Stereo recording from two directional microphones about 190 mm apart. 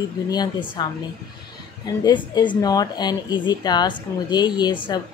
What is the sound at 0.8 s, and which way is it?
Speech, 25° left (ahead or behind).